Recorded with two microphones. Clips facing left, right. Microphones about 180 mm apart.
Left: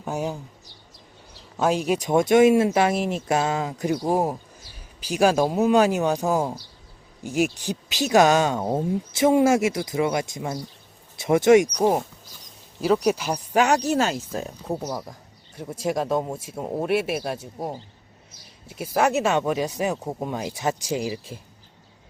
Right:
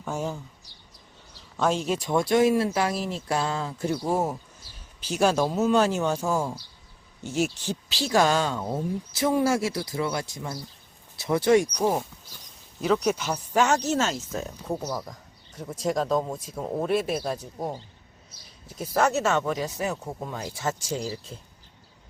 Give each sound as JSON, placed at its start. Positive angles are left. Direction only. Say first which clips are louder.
{"t": 0.0, "sound": "speech", "louder": "left 3 dB", "side_deg": 15}
{"t": 1.5, "sound": "speech", "louder": "left 3 dB", "side_deg": 15}
{"t": 11.4, "sound": "speech", "louder": "left 5 dB", "side_deg": 80}
{"t": 11.8, "sound": "speech", "louder": "left 4 dB", "side_deg": 15}
{"t": 13.1, "sound": "speech", "louder": "left 3 dB", "side_deg": 15}
{"t": 18.8, "sound": "speech", "louder": "left 2 dB", "side_deg": 15}